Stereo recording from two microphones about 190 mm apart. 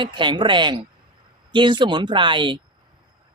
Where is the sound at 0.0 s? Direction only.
25° right (ahead or behind).